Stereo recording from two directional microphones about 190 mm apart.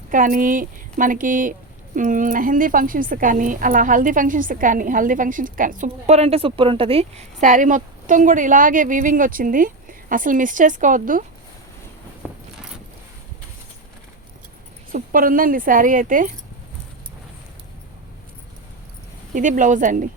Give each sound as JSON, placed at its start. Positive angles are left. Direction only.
{"t": 0.1, "sound": "a woman's voice", "side_deg": -45}
{"t": 14.9, "sound": "a woman's voice", "side_deg": -45}
{"t": 19.3, "sound": "a woman's voice", "side_deg": -40}